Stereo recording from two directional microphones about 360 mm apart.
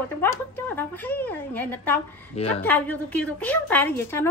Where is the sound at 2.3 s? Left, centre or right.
Centre.